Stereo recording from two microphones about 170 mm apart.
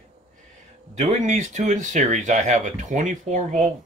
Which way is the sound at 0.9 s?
40° right (ahead or behind).